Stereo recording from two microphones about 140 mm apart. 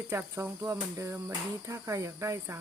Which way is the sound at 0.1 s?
15° right (ahead or behind).